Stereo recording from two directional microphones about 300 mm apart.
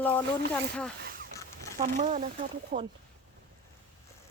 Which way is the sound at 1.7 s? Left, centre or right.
Right.